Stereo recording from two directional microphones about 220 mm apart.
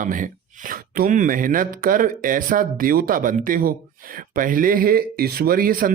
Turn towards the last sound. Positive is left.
turn(degrees=-40)  # may be behind; listen again after turning